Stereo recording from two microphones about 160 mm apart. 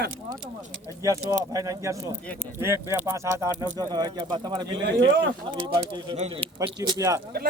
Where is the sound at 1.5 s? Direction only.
20° right (ahead or behind); by 6.7 s 35° right (ahead or behind).